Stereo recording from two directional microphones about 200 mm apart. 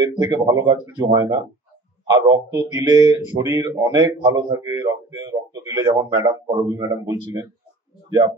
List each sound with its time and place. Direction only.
0.0 s a man's voice: 20° right (ahead or behind)